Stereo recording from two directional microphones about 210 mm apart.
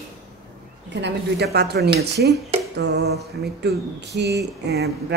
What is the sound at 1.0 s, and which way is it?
Speech, 50° right (ahead or behind).